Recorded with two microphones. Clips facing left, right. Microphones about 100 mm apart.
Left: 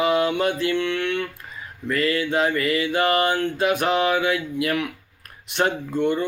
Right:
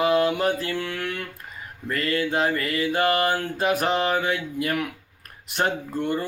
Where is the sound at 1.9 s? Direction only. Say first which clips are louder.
Left 3 dB; 40° right (ahead or behind).